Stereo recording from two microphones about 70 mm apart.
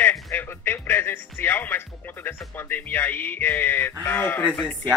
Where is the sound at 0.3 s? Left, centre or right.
Left.